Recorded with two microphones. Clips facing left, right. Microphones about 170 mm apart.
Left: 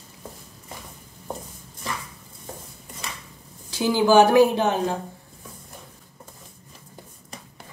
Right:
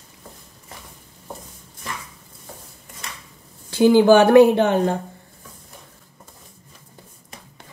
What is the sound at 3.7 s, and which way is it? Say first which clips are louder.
A woman's voice: right 5 dB; 60° right (ahead or behind).